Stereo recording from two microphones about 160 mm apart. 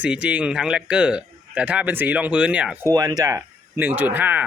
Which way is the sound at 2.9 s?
25° right (ahead or behind).